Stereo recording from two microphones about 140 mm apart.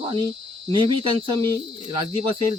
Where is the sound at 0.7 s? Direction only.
35° right (ahead or behind).